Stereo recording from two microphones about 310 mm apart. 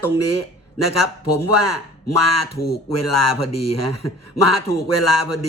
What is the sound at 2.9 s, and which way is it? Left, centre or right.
Speech, left.